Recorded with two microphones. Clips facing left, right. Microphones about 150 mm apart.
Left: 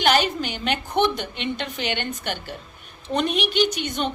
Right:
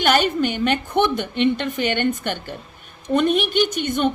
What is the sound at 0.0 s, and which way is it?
A woman's voice, 50° right (ahead or behind).